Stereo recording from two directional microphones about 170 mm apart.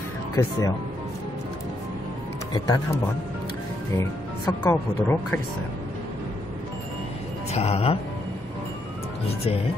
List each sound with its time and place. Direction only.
0.4 s speech: 20° left (ahead or behind)
2.5 s speech: 20° left (ahead or behind)
4.5 s speech: 10° left (ahead or behind)
7.5 s speech: 35° left (ahead or behind)